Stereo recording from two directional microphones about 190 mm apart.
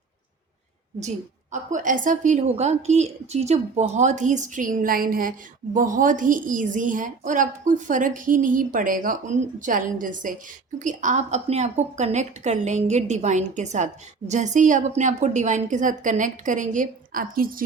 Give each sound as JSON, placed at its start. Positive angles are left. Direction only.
{"t": 1.7, "sound": "a woman's voice", "side_deg": -45}